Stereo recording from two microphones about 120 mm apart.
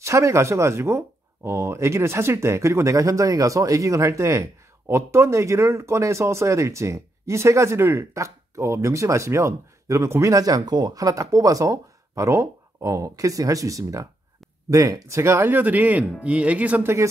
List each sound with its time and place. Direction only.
0.0 s speech: 25° right (ahead or behind)